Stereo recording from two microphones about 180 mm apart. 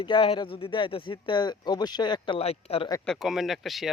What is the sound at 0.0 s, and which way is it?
Speech, 30° left (ahead or behind).